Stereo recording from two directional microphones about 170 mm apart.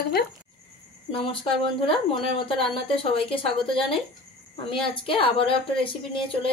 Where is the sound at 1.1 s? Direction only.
30° left (ahead or behind).